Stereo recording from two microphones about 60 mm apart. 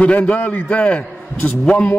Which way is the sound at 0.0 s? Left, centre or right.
Left.